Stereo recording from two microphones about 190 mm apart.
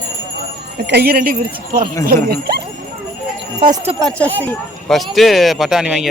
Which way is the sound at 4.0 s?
5° left (ahead or behind).